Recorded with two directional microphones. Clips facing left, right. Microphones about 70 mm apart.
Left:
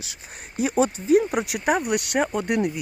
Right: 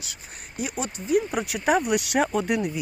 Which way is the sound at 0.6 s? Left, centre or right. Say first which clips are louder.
Left 9 dB; left.